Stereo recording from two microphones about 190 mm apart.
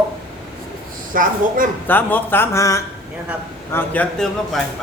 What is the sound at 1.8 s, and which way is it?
A man's voice, 10° left (ahead or behind).